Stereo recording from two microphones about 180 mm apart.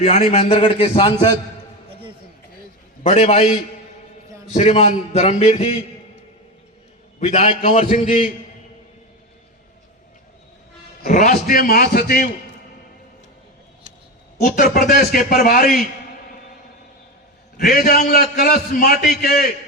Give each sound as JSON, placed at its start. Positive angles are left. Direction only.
{"t": 0.0, "sound": "a man's voice", "side_deg": 40}
{"t": 3.0, "sound": "a man's voice", "side_deg": 35}
{"t": 4.5, "sound": "a man's voice", "side_deg": 40}
{"t": 7.2, "sound": "a man's voice", "side_deg": 35}
{"t": 11.0, "sound": "a man's voice", "side_deg": 45}
{"t": 14.4, "sound": "a man's voice", "side_deg": 50}
{"t": 17.6, "sound": "a man's voice", "side_deg": 55}